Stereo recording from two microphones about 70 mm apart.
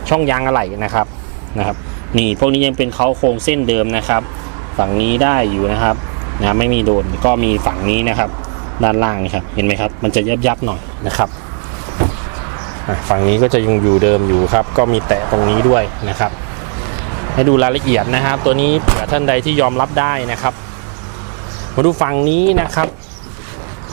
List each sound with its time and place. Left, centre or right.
0.0 s speech: centre
2.1 s speech: centre
12.9 s speech: right
21.8 s speech: right